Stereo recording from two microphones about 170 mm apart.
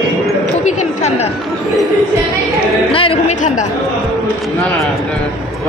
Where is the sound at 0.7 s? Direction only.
45° left (ahead or behind).